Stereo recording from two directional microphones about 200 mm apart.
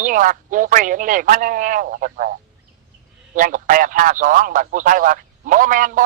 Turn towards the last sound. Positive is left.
turn(degrees=-40)  # may be behind; listen again after turning